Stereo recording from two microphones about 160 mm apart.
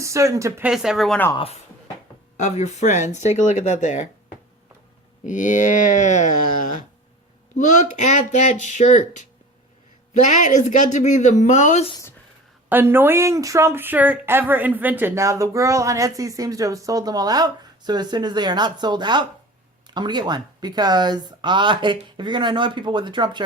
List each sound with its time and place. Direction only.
0.0 s speech: 20° right (ahead or behind)
0.7 s speech: centre (ahead or behind)
2.4 s speech: 45° left (ahead or behind)
5.2 s speech: 50° left (ahead or behind)
7.5 s speech: 50° left (ahead or behind)
10.4 s speech: 50° left (ahead or behind)
12.6 s speech: 15° right (ahead or behind); by 23.4 s 30° right (ahead or behind)